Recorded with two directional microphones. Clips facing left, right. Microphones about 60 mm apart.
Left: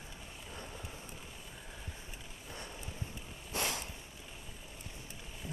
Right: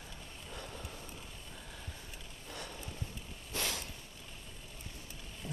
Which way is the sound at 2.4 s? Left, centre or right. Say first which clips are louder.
Right 2 dB; centre.